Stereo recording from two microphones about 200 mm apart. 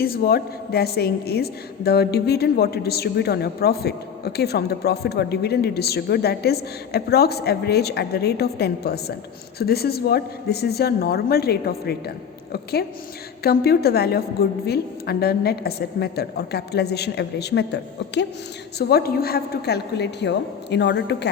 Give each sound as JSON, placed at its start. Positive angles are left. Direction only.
{"t": 0.0, "sound": "a woman's voice", "side_deg": 50}